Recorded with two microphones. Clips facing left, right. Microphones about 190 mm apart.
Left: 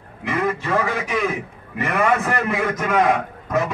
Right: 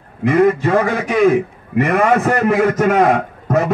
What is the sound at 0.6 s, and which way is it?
Speech, 50° right (ahead or behind).